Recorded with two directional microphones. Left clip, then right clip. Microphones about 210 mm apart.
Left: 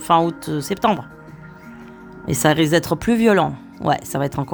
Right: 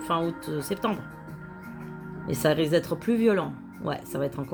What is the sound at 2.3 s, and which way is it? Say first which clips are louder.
Speech: left 7 dB; 45° left (ahead or behind).